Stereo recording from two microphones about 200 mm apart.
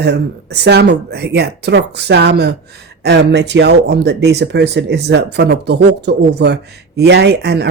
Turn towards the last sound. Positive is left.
turn(degrees=-55)  # may be behind; listen again after turning